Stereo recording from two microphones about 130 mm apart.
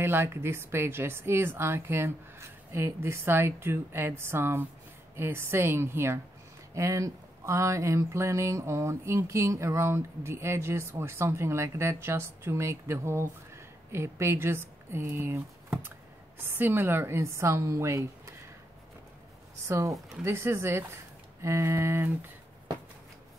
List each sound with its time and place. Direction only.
0.0 s speech: 15° right (ahead or behind)
19.7 s speech: 25° right (ahead or behind)